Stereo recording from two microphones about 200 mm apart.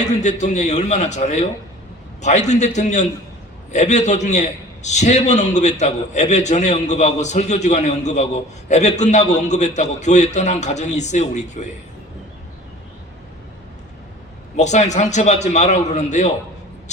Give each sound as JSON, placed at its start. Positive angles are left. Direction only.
{"t": 0.0, "sound": "a man's voice", "side_deg": 35}
{"t": 14.5, "sound": "a man's voice", "side_deg": 35}